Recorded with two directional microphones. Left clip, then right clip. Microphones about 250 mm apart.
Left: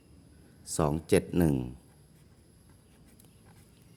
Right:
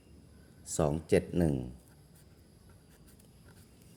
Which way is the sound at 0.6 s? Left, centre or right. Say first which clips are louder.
Left 1 dB; centre.